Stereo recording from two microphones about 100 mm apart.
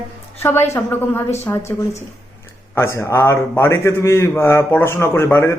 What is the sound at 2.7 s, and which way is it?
A man's voice, 25° left (ahead or behind).